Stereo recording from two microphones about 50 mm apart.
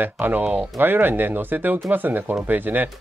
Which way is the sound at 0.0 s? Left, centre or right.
Right.